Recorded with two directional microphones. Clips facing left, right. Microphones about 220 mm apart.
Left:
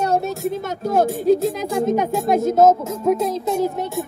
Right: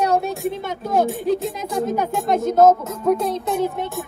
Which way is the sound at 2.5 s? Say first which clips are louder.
Right 3 dB; 5° left (ahead or behind).